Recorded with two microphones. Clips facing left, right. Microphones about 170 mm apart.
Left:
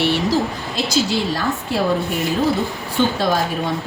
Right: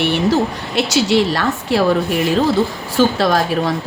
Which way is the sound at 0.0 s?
55° right (ahead or behind).